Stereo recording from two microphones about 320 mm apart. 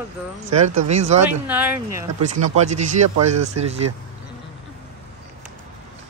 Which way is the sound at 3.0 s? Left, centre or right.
Right.